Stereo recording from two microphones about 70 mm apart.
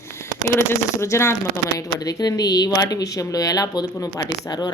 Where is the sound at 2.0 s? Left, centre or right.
Left.